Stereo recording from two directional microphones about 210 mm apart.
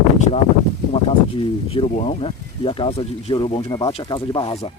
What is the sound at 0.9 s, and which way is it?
Speech, 25° left (ahead or behind).